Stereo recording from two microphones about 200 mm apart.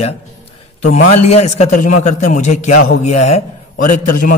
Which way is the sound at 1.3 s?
35° left (ahead or behind).